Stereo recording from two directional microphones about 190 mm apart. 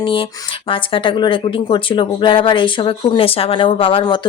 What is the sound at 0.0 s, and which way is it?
Speech, 25° left (ahead or behind).